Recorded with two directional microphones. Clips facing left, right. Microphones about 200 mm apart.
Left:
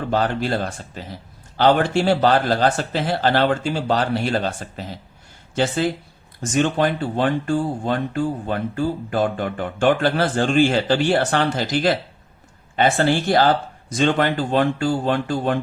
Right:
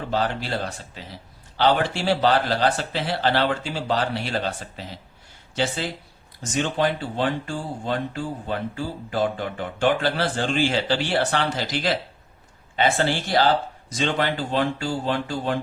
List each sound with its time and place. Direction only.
0.1 s speech: 50° left (ahead or behind)
6.4 s speech: 50° left (ahead or behind)